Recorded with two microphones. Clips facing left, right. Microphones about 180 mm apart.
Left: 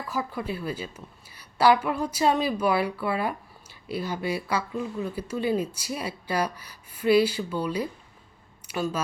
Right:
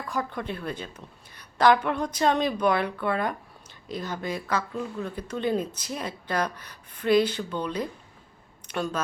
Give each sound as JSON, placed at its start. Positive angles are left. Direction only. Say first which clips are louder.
{"t": 0.1, "sound": "speech", "louder": "even", "side_deg": 5}